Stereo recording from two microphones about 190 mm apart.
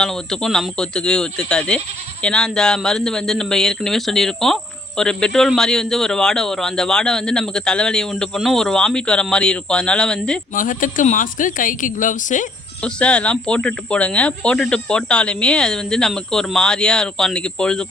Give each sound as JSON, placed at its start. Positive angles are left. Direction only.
{"t": 0.0, "sound": "speech", "side_deg": 0}
{"t": 10.5, "sound": "a woman's voice", "side_deg": 45}
{"t": 12.8, "sound": "speech", "side_deg": 5}